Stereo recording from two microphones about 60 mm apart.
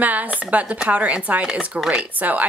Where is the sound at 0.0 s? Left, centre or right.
Right.